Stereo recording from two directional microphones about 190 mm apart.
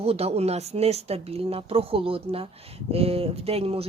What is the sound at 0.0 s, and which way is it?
Speech, 30° right (ahead or behind).